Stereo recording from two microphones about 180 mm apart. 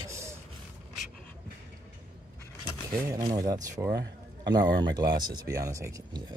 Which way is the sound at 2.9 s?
20° right (ahead or behind).